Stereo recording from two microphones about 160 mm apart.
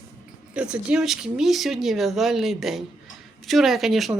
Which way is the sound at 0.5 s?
5° right (ahead or behind).